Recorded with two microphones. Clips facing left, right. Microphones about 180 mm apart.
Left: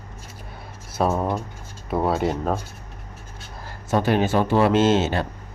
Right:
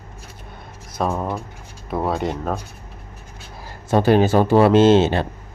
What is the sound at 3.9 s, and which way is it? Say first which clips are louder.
Speech: right 5 dB; 35° right (ahead or behind).